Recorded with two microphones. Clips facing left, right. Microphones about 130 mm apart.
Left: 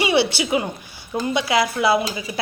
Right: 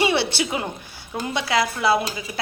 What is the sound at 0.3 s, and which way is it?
A woman's voice, 5° left (ahead or behind).